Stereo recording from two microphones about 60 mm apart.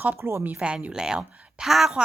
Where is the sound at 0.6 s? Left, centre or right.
Centre.